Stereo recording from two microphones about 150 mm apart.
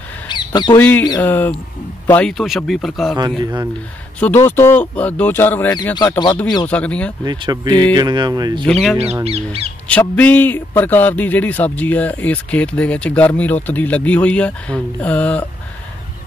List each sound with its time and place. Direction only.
0.3 s squawk: 30° left (ahead or behind)
0.7 s a man's voice: 15° left (ahead or behind)
2.3 s speech: centre (ahead or behind)
3.2 s speech: 30° right (ahead or behind)
4.2 s a man's voice: 15° left (ahead or behind)
5.9 s speech: 30° left (ahead or behind)
6.7 s a man's voice: 10° left (ahead or behind)
7.2 s speech: 30° right (ahead or behind)
8.6 s speech: 5° left (ahead or behind)
8.9 s speech: 45° right (ahead or behind)
9.8 s a man's voice: 10° left (ahead or behind)